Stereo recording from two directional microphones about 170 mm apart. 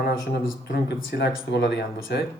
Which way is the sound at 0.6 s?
90° left.